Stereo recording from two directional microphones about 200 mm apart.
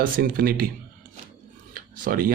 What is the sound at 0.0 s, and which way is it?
Speech, 45° right (ahead or behind).